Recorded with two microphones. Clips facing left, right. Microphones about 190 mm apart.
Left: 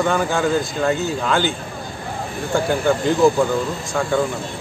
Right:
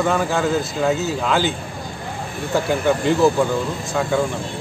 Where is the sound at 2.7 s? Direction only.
Centre (ahead or behind).